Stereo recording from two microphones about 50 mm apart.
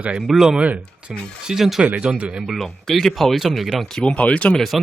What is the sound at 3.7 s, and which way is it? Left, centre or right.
Speech, centre.